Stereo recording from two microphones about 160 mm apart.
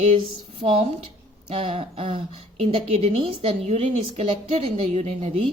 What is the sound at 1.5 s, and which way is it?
A woman's voice, 35° right (ahead or behind).